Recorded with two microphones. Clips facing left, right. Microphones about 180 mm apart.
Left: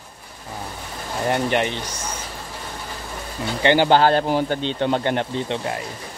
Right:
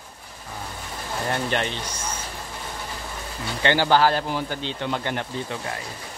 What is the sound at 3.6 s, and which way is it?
Speech, 20° left (ahead or behind).